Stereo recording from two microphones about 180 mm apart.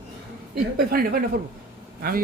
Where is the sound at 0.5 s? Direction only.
55° right (ahead or behind).